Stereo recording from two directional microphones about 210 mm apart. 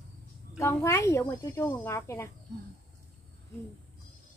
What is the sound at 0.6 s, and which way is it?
Speech, 10° left (ahead or behind).